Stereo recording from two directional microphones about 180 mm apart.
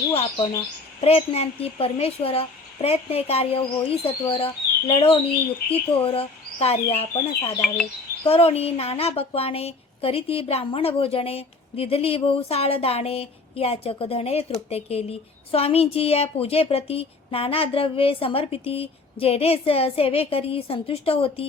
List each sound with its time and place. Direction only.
0.1 s a woman's voice: 35° left (ahead or behind)